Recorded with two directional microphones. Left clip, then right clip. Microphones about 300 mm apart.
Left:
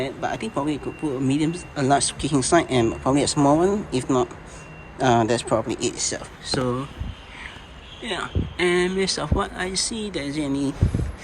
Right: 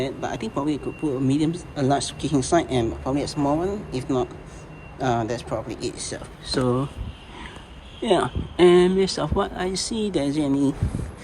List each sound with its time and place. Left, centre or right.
0.0 s speech: centre
8.0 s speech: centre